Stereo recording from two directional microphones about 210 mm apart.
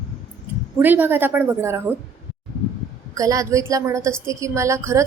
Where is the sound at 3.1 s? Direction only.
15° right (ahead or behind).